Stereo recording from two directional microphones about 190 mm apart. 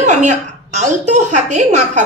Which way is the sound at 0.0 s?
40° right (ahead or behind).